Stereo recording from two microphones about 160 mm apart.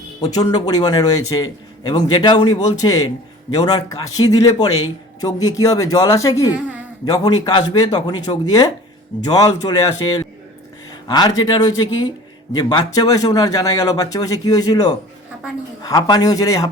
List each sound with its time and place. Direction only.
0.2 s a man's voice: 25° left (ahead or behind)